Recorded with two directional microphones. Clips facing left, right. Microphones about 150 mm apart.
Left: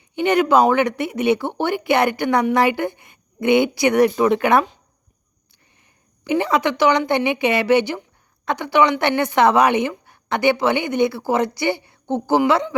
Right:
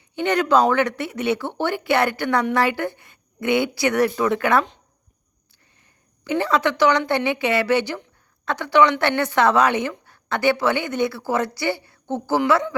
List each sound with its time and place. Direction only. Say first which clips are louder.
0.2 s speech: left 3 dB; 10° left (ahead or behind)
6.2 s speech: left 2 dB; 15° left (ahead or behind)